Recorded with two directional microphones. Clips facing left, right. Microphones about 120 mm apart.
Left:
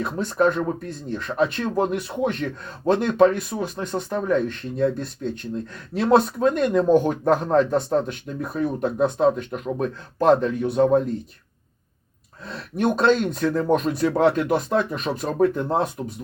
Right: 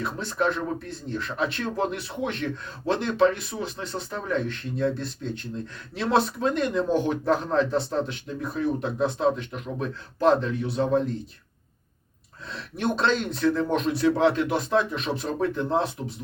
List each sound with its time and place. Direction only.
0.2 s speech: 45° left (ahead or behind)
12.7 s speech: 45° left (ahead or behind)